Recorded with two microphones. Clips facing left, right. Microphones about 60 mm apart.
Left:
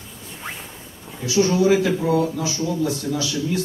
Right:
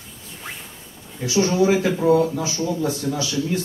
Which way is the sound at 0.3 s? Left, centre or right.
Centre.